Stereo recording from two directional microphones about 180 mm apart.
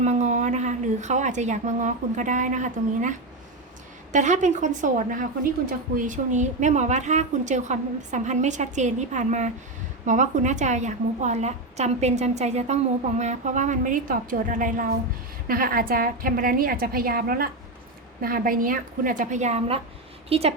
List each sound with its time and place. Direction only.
0.0 s a woman's voice: 40° right (ahead or behind)